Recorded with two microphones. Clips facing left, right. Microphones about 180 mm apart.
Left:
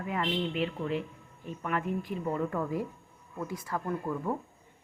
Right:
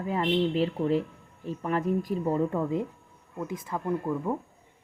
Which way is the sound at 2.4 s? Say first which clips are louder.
Right 4 dB; 25° right (ahead or behind).